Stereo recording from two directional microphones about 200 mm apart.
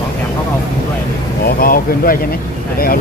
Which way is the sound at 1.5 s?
45° left (ahead or behind).